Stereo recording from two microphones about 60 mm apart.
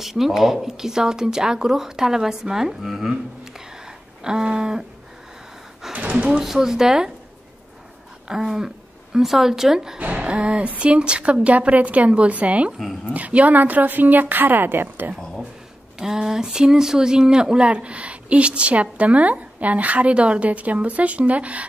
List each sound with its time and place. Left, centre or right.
0.0 s speech: centre
5.9 s speech: centre
6.4 s speech: centre
8.3 s speech: centre
9.9 s speech: right
12.7 s speech: centre
13.1 s a woman's voice: right
16.0 s speech: centre